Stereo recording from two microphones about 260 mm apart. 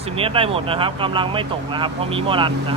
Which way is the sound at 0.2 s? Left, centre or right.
Right.